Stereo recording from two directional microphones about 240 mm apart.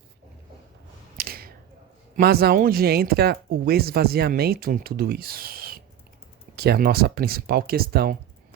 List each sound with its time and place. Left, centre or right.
1.1 s finger snapping: right
2.1 s speech: right